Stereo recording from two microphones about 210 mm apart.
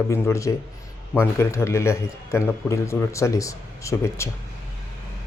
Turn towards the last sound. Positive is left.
turn(degrees=15)  # may be behind; listen again after turning